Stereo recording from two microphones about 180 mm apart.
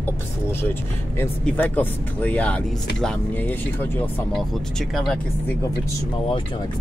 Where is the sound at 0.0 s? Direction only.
10° left (ahead or behind).